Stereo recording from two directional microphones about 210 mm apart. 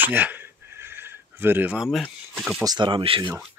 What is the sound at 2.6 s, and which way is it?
Speech, 20° right (ahead or behind).